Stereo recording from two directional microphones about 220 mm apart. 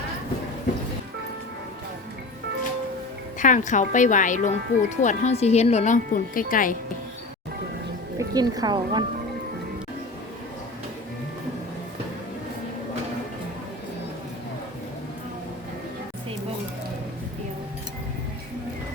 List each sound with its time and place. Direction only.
3.3 s speech: 35° left (ahead or behind)
8.2 s speech: 15° right (ahead or behind)